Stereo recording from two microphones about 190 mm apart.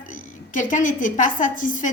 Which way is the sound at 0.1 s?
45° left (ahead or behind).